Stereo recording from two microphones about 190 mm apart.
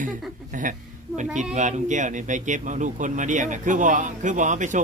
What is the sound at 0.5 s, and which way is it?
A woman's voice, 45° right (ahead or behind).